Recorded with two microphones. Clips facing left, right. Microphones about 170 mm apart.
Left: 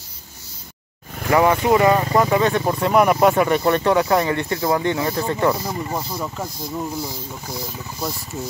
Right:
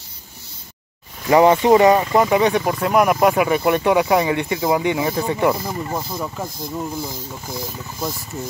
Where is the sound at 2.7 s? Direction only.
Centre (ahead or behind).